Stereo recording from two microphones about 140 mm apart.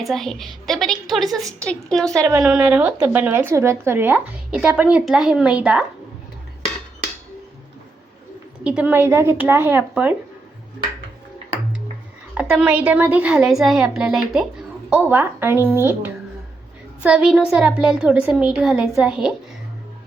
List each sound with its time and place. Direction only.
0.0 s a woman's voice: centre (ahead or behind)
2.4 s speech: 5° right (ahead or behind)
8.6 s speech: 10° right (ahead or behind)
12.3 s a woman's voice: 10° right (ahead or behind)